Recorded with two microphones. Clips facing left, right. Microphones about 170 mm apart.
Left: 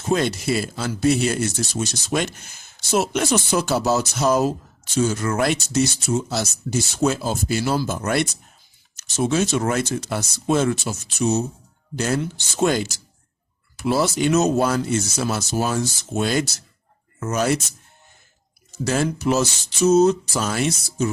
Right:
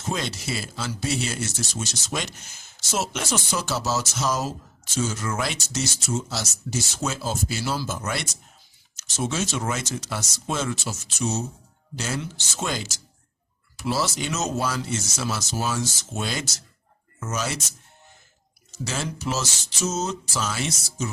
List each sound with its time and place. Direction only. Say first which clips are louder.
0.1 s speech: left 9 dB; 55° left (ahead or behind)
18.9 s speech: left 9 dB; 55° left (ahead or behind)